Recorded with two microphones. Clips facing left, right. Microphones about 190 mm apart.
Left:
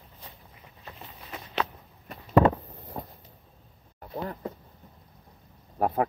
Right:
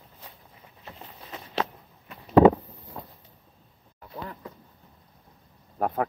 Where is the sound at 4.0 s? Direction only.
40° left (ahead or behind).